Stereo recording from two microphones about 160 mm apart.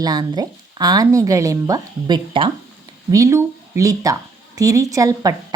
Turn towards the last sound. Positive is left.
turn(degrees=-20)  # may be behind; listen again after turning